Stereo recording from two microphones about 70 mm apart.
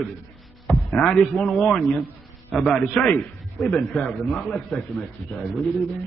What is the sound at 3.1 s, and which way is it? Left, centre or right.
Speech, centre.